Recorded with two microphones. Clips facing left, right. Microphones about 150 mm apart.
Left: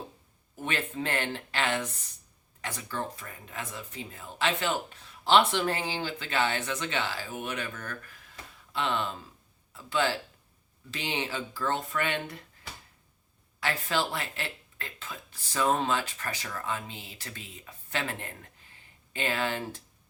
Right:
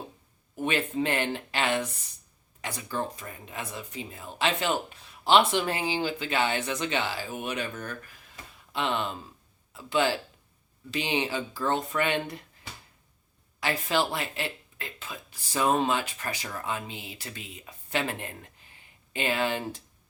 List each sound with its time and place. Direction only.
0.5 s speech: 15° right (ahead or behind)
13.6 s speech: 15° right (ahead or behind)